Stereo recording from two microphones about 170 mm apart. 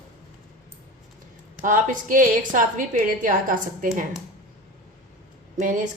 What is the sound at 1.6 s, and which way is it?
A woman's voice, 50° right (ahead or behind).